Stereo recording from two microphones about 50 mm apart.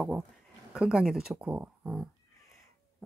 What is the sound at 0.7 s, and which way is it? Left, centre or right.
Speech, centre.